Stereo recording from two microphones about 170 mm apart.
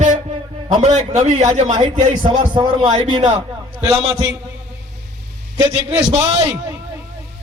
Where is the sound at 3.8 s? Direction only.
20° right (ahead or behind).